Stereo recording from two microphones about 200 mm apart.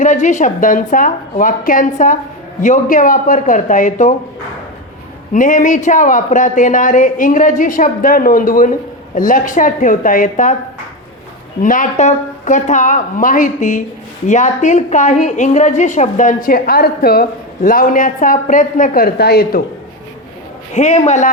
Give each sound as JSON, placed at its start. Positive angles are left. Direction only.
{"t": 0.0, "sound": "a woman's voice", "side_deg": 35}
{"t": 5.3, "sound": "a woman's voice", "side_deg": 40}
{"t": 11.6, "sound": "a woman's voice", "side_deg": 40}
{"t": 20.7, "sound": "a woman's voice", "side_deg": 35}